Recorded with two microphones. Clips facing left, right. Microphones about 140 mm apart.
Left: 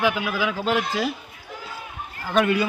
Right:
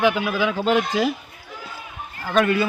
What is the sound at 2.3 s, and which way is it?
Speech, 15° left (ahead or behind).